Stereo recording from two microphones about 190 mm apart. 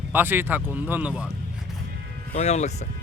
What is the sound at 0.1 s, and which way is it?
Speech, 10° right (ahead or behind).